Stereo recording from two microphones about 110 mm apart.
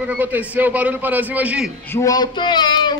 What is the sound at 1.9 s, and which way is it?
Speech, 30° left (ahead or behind).